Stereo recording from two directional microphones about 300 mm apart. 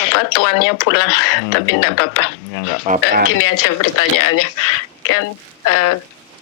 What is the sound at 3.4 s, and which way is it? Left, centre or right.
Speech, left.